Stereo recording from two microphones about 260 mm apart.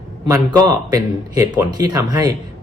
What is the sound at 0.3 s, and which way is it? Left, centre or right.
Speech, centre.